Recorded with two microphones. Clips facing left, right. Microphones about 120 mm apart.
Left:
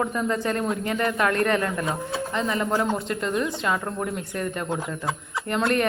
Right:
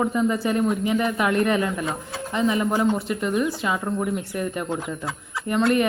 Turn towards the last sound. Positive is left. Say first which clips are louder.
# right 3 dB
turn(degrees=-5)  # may be behind; listen again after turning